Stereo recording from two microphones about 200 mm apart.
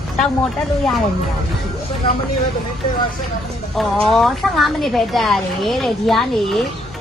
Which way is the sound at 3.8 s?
Centre (ahead or behind).